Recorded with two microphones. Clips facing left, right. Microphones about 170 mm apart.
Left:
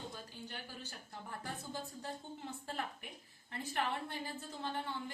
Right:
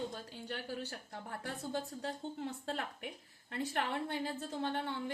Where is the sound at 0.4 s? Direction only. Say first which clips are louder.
Right 7 dB; 65° right (ahead or behind).